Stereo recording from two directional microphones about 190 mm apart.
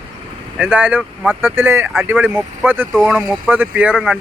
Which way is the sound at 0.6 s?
10° right (ahead or behind).